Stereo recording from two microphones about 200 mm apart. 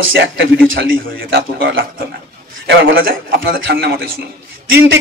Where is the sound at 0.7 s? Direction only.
75° right (ahead or behind).